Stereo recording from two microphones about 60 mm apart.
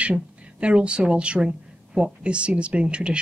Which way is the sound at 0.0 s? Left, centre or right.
Right.